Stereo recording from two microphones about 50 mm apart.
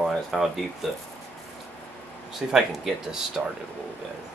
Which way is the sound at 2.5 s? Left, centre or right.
Centre.